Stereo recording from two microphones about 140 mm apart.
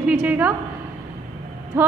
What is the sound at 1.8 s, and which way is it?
Speech, 15° right (ahead or behind).